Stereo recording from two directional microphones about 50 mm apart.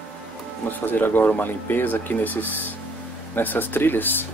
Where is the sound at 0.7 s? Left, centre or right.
Left.